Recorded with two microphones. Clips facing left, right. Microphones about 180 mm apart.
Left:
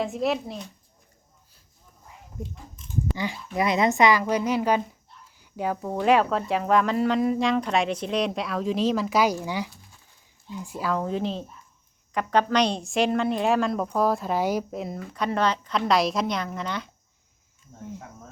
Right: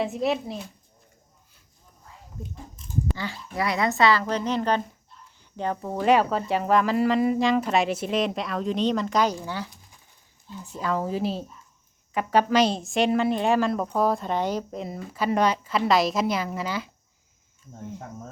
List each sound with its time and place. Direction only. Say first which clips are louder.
0.0 s speech: even; centre (ahead or behind)
3.2 s speech: left 3 dB; 20° left (ahead or behind); by 14.9 s 5° left (ahead or behind)
15.1 s speech: right 2 dB; 10° right (ahead or behind)